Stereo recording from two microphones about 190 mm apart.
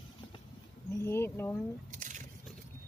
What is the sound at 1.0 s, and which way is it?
Speech, 15° left (ahead or behind).